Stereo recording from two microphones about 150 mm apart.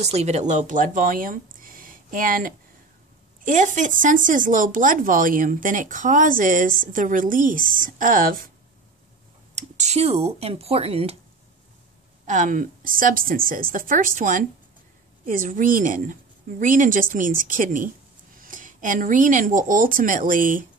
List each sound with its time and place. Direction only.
0.0 s speech: 45° right (ahead or behind); by 8.5 s 70° right (ahead or behind)
9.6 s speech: 50° right (ahead or behind)
12.3 s speech: 60° right (ahead or behind)